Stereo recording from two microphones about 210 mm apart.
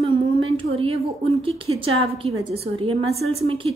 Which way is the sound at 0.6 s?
30° right (ahead or behind).